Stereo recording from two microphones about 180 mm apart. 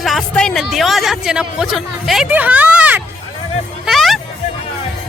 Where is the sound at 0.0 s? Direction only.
Centre (ahead or behind).